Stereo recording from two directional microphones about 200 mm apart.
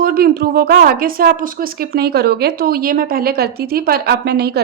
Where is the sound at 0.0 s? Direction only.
50° right (ahead or behind).